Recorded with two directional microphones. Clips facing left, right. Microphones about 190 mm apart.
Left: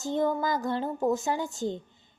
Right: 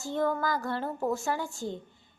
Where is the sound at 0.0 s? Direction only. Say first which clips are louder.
Left 2 dB; 20° left (ahead or behind).